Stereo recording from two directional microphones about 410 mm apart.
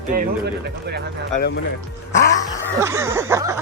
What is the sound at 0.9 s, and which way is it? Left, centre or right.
Speech, right.